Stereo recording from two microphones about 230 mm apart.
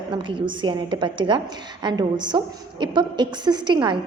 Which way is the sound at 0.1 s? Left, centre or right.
Right.